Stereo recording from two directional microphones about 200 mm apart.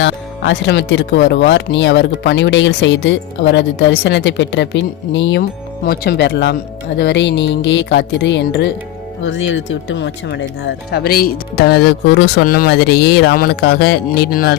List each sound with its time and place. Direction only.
0.0 s speech: 65° left (ahead or behind)
5.4 s speech: 50° left (ahead or behind)
9.2 s speech: 70° left (ahead or behind); by 14.5 s 50° left (ahead or behind)